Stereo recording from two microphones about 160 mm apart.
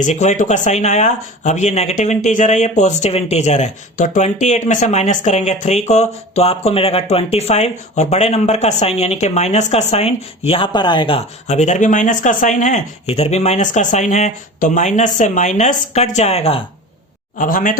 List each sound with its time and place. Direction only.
0.0 s speech: 45° left (ahead or behind)
17.3 s speech: 55° left (ahead or behind)